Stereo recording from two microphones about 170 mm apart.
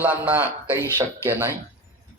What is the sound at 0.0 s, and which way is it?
A man's voice, 10° right (ahead or behind).